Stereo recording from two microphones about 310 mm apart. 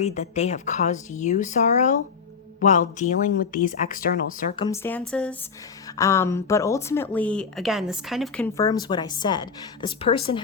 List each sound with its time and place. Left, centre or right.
0.0 s speech: left
4.5 s a woman's voice: centre
8.5 s a woman's voice: centre